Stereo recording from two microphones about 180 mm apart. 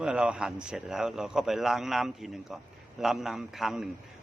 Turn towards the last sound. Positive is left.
turn(degrees=0)  # may be behind; listen again after turning